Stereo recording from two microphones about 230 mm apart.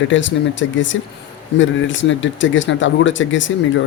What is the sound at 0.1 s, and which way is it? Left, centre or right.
Speech, left.